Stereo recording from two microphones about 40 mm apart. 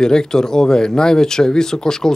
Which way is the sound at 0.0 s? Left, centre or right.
Centre.